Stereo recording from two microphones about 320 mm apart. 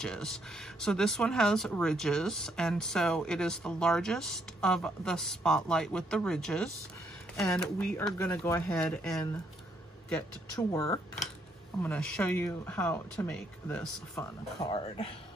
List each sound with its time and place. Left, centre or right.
0.0 s speech: centre
14.6 s speech: centre